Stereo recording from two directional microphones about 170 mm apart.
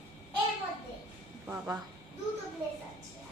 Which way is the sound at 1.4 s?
15° right (ahead or behind).